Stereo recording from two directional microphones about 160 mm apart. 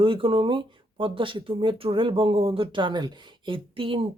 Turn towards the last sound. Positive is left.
turn(degrees=-35)  # may be behind; listen again after turning